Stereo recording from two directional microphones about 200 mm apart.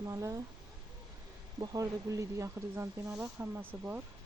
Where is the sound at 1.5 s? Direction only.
15° right (ahead or behind).